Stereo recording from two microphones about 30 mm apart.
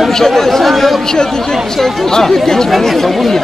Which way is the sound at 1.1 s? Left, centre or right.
Centre.